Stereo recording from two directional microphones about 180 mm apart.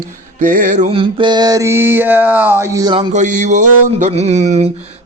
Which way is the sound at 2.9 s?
30° right (ahead or behind).